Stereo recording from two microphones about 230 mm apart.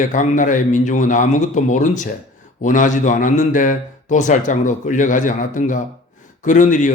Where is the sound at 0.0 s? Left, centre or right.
Left.